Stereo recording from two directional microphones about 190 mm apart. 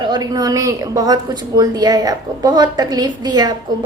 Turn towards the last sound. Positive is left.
turn(degrees=-20)  # may be behind; listen again after turning